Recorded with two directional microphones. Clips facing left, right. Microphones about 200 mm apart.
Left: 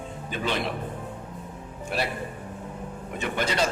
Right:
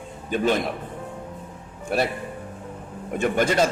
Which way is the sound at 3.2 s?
50° right (ahead or behind).